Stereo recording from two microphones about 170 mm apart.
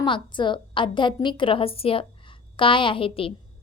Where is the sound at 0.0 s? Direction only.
30° left (ahead or behind).